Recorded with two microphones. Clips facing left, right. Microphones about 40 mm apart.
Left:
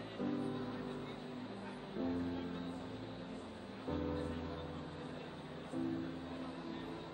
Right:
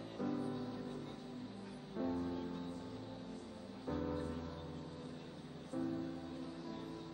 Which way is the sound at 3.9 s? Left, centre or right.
Left.